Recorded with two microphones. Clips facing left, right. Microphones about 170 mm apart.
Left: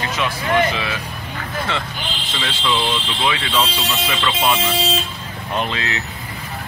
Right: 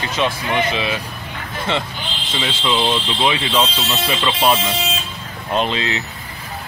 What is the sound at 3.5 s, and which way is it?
Speech, 10° right (ahead or behind).